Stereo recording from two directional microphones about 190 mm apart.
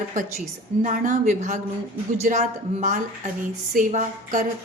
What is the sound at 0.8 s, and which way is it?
A woman's voice, 45° right (ahead or behind).